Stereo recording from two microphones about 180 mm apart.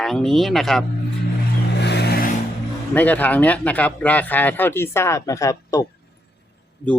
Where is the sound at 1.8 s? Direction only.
65° left (ahead or behind).